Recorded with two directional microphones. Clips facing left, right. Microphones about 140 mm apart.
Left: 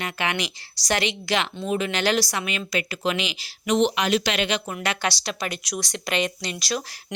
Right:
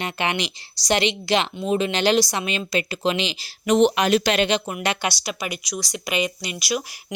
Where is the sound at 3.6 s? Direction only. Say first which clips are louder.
Right 4 dB; 50° right (ahead or behind); by 6.8 s 10° right (ahead or behind).